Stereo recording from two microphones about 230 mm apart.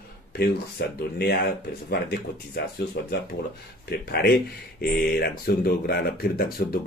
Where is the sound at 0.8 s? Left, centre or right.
Left.